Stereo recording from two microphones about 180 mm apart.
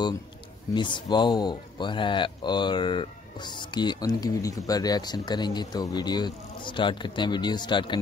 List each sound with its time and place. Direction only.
0.7 s speech: 25° left (ahead or behind)